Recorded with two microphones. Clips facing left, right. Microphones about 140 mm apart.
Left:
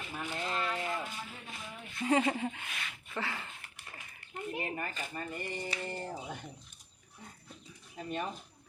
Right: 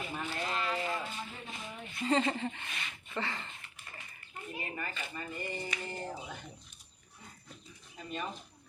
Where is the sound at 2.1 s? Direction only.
10° left (ahead or behind).